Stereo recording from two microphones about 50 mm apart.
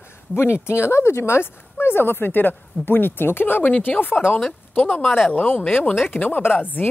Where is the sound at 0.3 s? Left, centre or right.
Left.